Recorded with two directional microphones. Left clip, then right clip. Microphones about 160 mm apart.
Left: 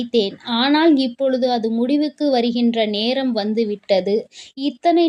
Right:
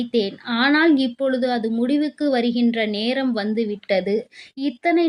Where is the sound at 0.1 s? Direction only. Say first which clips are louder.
Left 4 dB; 25° left (ahead or behind).